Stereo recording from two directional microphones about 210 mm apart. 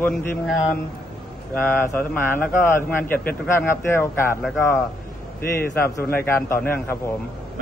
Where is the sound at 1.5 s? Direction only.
10° left (ahead or behind).